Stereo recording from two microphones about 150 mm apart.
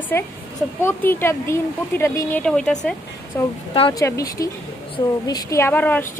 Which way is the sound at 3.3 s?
20° left (ahead or behind).